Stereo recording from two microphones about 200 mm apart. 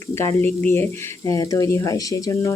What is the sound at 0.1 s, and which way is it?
Speech, 15° left (ahead or behind).